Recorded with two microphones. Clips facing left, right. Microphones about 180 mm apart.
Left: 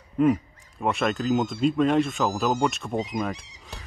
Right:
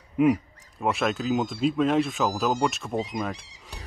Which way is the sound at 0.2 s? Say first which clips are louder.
Even; 5° right (ahead or behind).